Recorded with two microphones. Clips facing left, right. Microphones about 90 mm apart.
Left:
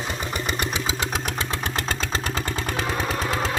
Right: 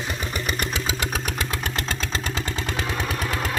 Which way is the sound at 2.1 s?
35° left (ahead or behind).